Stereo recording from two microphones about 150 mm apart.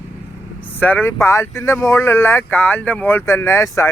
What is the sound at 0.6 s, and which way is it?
Speech, 10° left (ahead or behind).